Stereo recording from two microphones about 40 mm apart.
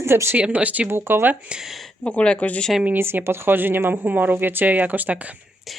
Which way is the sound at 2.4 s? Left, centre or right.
Left.